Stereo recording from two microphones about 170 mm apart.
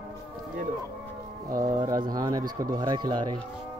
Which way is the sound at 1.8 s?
25° right (ahead or behind).